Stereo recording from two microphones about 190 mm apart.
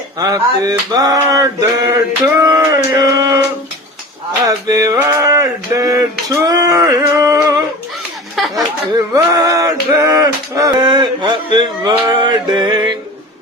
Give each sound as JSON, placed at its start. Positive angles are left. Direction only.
{"t": 0.2, "sound": "male singing", "side_deg": -20}
{"t": 4.4, "sound": "male singing", "side_deg": -20}
{"t": 8.4, "sound": "chatter", "side_deg": 0}
{"t": 9.1, "sound": "male singing", "side_deg": -20}
{"t": 12.2, "sound": "music", "side_deg": -25}